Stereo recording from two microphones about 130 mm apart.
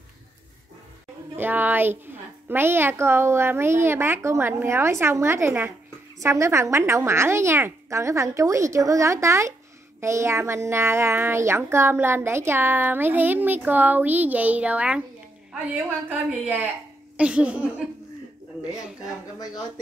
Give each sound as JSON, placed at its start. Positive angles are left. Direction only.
{"t": 1.3, "sound": "a woman's voice", "side_deg": -15}
{"t": 17.2, "sound": "a child's voice", "side_deg": -10}
{"t": 19.3, "sound": "speech", "side_deg": 30}